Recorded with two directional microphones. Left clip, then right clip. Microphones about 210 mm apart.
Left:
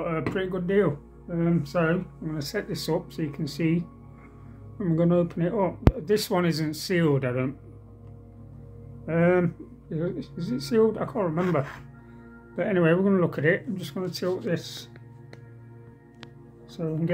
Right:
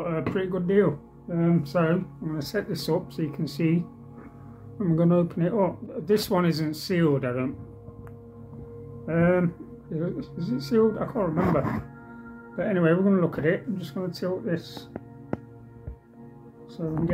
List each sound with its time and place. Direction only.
0.0 s speech: 15° left (ahead or behind)
9.0 s speech: 20° left (ahead or behind)
16.8 s speech: 30° left (ahead or behind)